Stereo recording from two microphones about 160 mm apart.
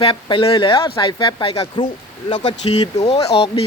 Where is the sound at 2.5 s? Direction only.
45° left (ahead or behind).